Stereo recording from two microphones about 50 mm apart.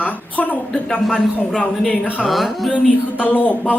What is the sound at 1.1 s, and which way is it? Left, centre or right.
A man's voice, centre.